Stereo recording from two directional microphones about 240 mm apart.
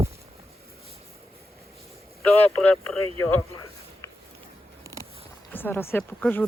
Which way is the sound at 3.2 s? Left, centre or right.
Centre.